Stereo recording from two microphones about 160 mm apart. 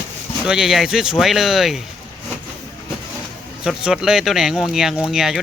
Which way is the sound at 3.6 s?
5° right (ahead or behind).